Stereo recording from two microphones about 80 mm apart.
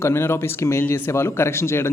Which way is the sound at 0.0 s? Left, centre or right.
Left.